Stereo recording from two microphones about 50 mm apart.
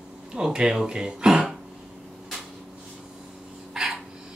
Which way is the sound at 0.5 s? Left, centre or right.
Centre.